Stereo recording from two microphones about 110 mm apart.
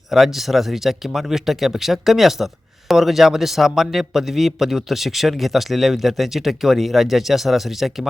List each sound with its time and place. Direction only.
0.1 s a man's voice: centre (ahead or behind)